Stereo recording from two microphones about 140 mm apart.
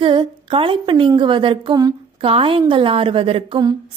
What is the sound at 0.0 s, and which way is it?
A woman's voice, 35° right (ahead or behind).